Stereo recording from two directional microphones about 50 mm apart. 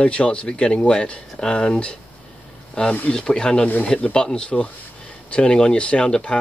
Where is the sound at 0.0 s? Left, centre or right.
Left.